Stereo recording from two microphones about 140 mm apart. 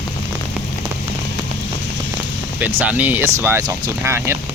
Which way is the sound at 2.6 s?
15° right (ahead or behind).